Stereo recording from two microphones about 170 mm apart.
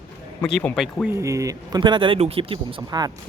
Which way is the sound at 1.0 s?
15° right (ahead or behind).